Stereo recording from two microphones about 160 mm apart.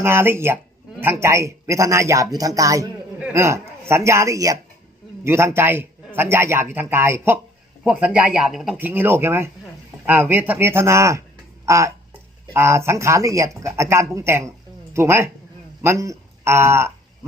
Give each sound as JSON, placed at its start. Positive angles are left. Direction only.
{"t": 0.0, "sound": "a man's voice", "side_deg": -15}